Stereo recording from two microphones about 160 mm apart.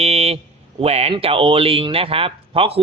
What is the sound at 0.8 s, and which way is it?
Speech, 40° right (ahead or behind).